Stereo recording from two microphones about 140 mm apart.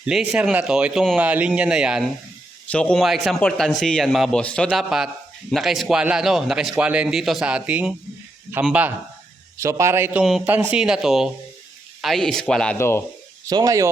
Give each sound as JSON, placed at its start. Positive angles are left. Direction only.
{"t": 0.0, "sound": "speech", "side_deg": -5}
{"t": 2.7, "sound": "a man's voice", "side_deg": 5}
{"t": 9.6, "sound": "a man's voice", "side_deg": -20}
{"t": 12.7, "sound": "speech", "side_deg": 20}
{"t": 13.5, "sound": "a man's voice", "side_deg": -25}